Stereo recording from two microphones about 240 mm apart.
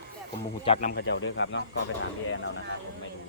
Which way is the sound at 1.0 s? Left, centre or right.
Left.